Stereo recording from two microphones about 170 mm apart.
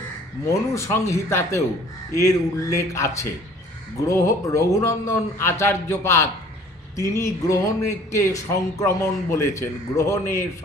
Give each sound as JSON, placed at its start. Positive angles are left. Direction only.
{"t": 0.4, "sound": "speech", "side_deg": 15}